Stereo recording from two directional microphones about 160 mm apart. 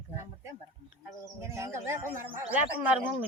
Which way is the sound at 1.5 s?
15° right (ahead or behind).